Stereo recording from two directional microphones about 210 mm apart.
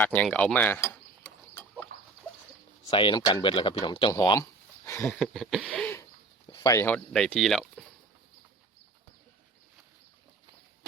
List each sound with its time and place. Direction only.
0.0 s mechanisms: 5° left (ahead or behind)
2.8 s speech: 20° left (ahead or behind)
5.0 s speech: centre (ahead or behind)